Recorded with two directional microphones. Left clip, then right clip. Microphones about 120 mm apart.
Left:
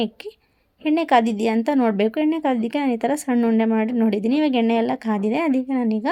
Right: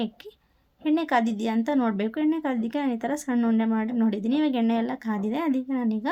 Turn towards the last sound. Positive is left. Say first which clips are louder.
# left 6 dB
turn(degrees=30)  # may be behind; listen again after turning